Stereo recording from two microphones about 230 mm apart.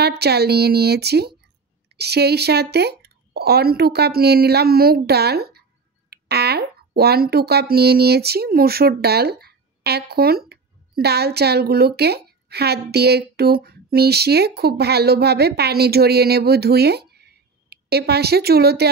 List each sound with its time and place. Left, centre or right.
0.0 s speech: right